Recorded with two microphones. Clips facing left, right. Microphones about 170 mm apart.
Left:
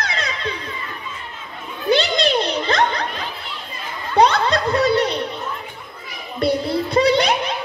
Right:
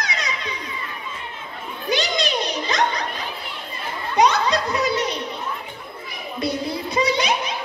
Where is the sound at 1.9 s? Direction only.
60° left (ahead or behind).